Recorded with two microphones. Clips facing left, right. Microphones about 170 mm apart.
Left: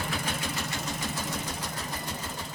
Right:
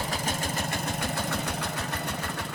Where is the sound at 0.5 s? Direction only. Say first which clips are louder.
Right 3 dB; 55° right (ahead or behind).